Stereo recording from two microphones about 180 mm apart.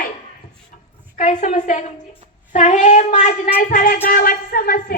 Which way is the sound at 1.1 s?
40° left (ahead or behind).